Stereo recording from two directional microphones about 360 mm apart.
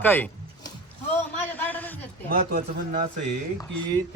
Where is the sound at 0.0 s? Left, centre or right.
Centre.